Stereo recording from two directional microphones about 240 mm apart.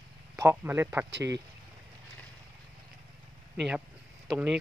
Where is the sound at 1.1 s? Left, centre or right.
Right.